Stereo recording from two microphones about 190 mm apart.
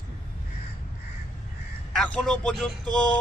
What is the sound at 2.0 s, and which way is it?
Speech, 5° left (ahead or behind).